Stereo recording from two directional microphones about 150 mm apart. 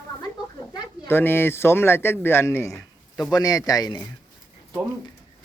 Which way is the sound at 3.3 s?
25° left (ahead or behind).